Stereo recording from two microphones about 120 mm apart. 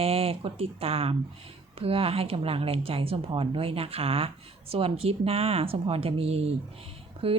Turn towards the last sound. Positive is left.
turn(degrees=-50)  # may be behind; listen again after turning